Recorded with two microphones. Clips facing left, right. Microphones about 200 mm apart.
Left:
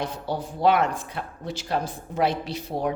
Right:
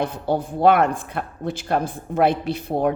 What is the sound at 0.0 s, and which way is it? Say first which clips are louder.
Speech: right 6 dB; 55° right (ahead or behind).